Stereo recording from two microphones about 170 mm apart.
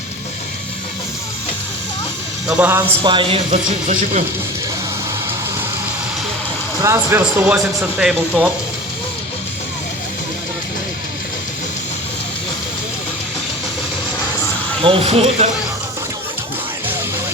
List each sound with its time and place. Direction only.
2.5 s speech: 10° right (ahead or behind)
3.0 s speech: 30° right (ahead or behind)
6.8 s speech: 15° right (ahead or behind)
14.8 s speech: 30° right (ahead or behind)